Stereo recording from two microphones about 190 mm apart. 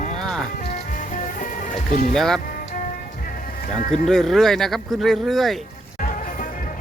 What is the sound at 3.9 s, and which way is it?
Speech, 5° left (ahead or behind).